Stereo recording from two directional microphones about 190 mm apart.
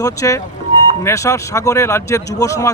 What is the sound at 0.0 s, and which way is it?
Speech, 15° left (ahead or behind).